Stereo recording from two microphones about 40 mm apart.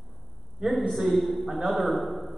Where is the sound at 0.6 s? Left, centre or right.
Centre.